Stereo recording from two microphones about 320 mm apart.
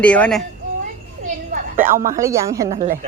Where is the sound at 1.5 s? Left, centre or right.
Right.